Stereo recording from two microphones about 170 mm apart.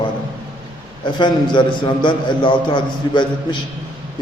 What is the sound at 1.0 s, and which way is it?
A man's voice, 25° left (ahead or behind).